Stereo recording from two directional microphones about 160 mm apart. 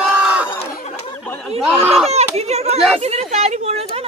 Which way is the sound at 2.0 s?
40° right (ahead or behind).